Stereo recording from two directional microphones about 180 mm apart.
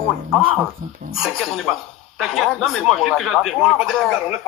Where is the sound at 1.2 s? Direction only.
Centre (ahead or behind).